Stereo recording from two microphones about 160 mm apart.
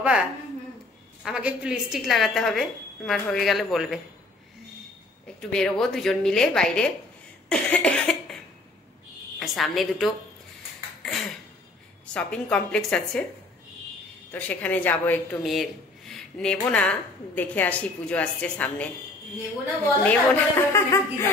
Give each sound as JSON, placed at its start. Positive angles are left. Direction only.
{"t": 1.2, "sound": "a woman's voice", "side_deg": -5}
{"t": 5.5, "sound": "a woman's voice", "side_deg": 5}
{"t": 7.4, "sound": "cough", "side_deg": 5}
{"t": 9.4, "sound": "a woman's voice", "side_deg": 0}
{"t": 11.0, "sound": "cough", "side_deg": 0}
{"t": 12.1, "sound": "a woman's voice", "side_deg": 5}
{"t": 14.3, "sound": "a woman's voice", "side_deg": 10}
{"t": 15.4, "sound": "a woman's voice", "side_deg": 0}
{"t": 20.0, "sound": "a woman's voice", "side_deg": 10}